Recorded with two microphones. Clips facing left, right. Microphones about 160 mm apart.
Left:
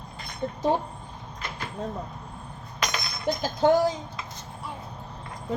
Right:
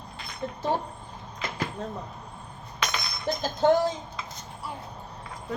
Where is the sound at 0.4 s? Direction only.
15° left (ahead or behind).